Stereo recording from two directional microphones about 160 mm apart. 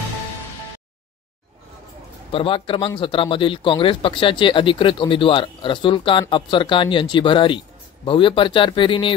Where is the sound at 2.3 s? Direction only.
35° left (ahead or behind).